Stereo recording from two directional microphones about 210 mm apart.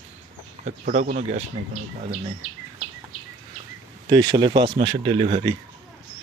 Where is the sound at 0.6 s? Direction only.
35° right (ahead or behind).